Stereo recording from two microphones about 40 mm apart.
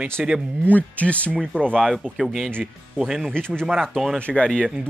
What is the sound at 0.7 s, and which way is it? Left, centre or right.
Speech, left.